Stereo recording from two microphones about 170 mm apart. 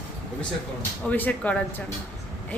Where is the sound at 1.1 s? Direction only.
10° left (ahead or behind).